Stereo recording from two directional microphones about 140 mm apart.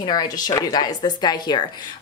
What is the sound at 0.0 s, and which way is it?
A woman's voice, 30° left (ahead or behind).